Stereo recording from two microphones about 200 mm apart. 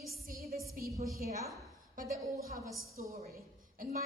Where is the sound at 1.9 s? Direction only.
45° right (ahead or behind).